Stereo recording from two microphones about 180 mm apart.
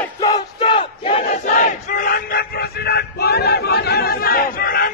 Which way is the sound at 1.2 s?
50° left (ahead or behind).